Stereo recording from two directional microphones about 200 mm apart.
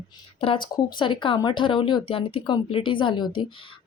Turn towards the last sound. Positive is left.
turn(degrees=20)  # may be behind; listen again after turning